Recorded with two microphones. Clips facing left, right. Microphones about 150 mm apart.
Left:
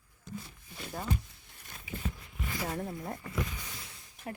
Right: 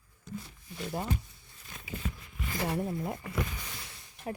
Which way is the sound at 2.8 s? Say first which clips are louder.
Right 4 dB; 5° right (ahead or behind).